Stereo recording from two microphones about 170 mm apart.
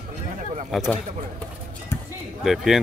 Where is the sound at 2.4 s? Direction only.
Centre (ahead or behind).